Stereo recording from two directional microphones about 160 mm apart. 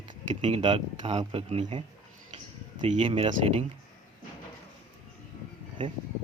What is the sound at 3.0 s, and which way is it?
Speech, 35° right (ahead or behind).